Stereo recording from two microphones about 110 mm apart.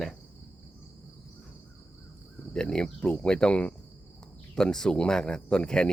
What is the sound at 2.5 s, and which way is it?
Speech, 5° left (ahead or behind).